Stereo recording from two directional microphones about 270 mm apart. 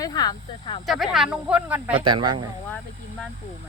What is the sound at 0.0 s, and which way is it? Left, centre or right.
Speech, centre.